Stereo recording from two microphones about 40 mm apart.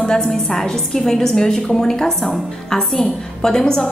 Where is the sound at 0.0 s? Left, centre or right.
Centre.